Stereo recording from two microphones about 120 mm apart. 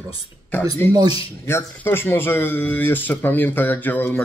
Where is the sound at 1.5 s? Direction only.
20° left (ahead or behind).